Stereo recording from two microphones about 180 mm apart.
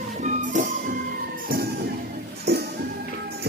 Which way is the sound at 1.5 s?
60° right (ahead or behind).